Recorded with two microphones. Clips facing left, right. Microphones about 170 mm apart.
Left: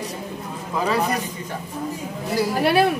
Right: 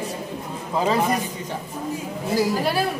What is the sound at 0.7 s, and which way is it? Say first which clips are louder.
Music: right 1 dB; 25° right (ahead or behind).